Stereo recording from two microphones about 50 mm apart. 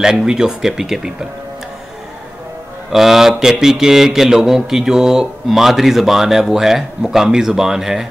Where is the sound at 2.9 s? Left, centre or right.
Centre.